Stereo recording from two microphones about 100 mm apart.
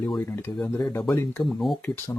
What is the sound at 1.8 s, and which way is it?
Speech, 20° left (ahead or behind).